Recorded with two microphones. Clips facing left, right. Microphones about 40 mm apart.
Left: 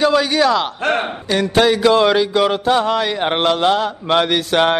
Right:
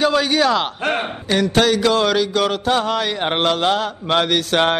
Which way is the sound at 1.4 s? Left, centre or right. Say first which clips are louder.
Left 3 dB; centre.